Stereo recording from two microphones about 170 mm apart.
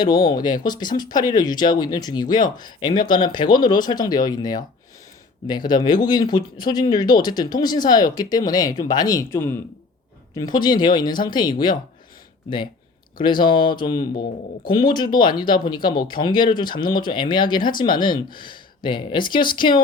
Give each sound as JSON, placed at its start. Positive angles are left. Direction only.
{"t": 0.6, "sound": "speech", "side_deg": 25}
{"t": 13.4, "sound": "speech", "side_deg": 30}
{"t": 14.0, "sound": "speech", "side_deg": 55}
{"t": 14.8, "sound": "speech", "side_deg": 25}